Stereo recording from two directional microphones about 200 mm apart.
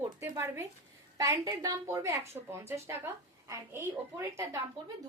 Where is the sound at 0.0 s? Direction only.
10° right (ahead or behind).